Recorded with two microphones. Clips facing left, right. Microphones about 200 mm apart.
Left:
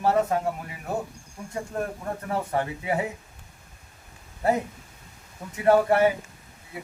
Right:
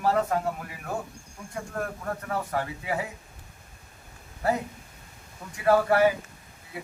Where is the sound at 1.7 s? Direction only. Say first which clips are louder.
Left 1 dB; 20° left (ahead or behind).